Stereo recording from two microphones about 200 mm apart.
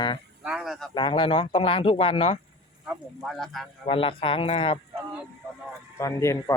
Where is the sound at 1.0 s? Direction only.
25° left (ahead or behind).